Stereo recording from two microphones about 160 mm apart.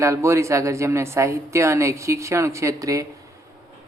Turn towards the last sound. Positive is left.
turn(degrees=-20)  # may be behind; listen again after turning